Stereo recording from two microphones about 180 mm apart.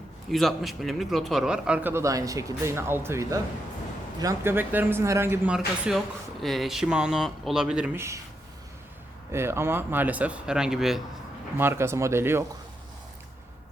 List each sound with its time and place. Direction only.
0.3 s a man's voice: centre (ahead or behind)
9.3 s a man's voice: 15° right (ahead or behind)
11.5 s a man's voice: 15° right (ahead or behind)